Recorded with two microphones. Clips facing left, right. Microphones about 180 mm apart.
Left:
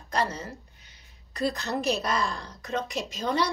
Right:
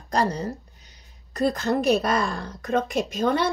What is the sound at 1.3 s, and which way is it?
A woman's voice, 50° right (ahead or behind).